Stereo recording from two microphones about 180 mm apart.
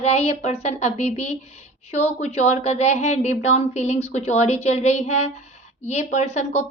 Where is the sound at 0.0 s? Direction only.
35° left (ahead or behind).